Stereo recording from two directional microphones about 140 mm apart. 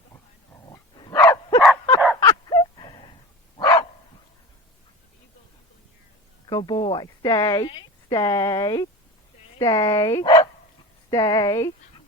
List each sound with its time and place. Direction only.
0.5 s dog: 20° left (ahead or behind)
0.9 s dog: 35° left (ahead or behind)
1.2 s dog: 20° left (ahead or behind)
2.2 s a sound: 25° left (ahead or behind)
3.6 s bow-wow: 30° left (ahead or behind)
6.5 s a woman's voice: 30° left (ahead or behind)
9.6 s speech: 40° left (ahead or behind)
9.8 s a woman's voice: 25° left (ahead or behind)